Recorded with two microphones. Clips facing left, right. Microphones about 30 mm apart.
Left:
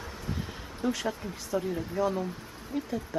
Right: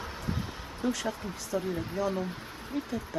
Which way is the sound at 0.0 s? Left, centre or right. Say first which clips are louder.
Right 2 dB; centre.